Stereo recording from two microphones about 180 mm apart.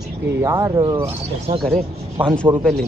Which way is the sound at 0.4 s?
15° right (ahead or behind).